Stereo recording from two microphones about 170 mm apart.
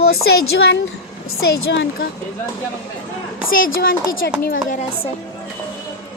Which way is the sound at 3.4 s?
55° left (ahead or behind).